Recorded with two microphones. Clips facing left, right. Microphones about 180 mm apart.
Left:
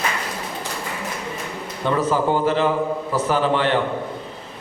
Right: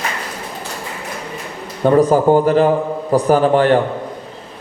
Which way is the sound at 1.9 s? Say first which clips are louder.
Right 8 dB; 45° right (ahead or behind).